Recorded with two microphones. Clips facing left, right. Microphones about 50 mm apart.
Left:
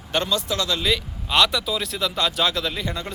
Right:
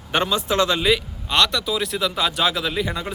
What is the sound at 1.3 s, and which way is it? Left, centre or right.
Speech, centre.